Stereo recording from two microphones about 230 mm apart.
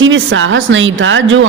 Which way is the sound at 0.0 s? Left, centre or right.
Right.